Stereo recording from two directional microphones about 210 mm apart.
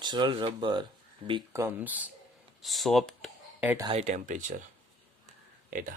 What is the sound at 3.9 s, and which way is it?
Speech, 30° right (ahead or behind).